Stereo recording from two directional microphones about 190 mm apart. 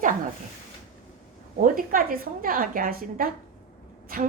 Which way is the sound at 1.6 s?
45° right (ahead or behind).